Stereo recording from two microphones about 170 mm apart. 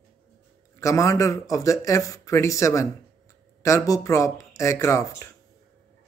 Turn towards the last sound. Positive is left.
turn(degrees=20)  # may be behind; listen again after turning